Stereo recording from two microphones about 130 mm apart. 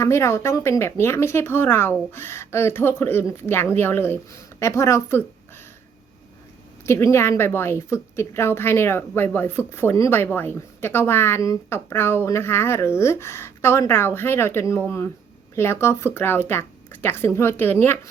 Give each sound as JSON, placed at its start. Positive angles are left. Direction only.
{"t": 0.0, "sound": "a woman's voice", "side_deg": 20}
{"t": 6.8, "sound": "a woman's voice", "side_deg": 20}